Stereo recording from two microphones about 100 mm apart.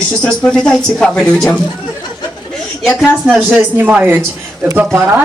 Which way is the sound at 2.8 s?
Centre (ahead or behind).